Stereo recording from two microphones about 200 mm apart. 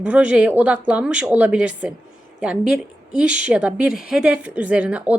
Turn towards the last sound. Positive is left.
turn(degrees=-5)  # may be behind; listen again after turning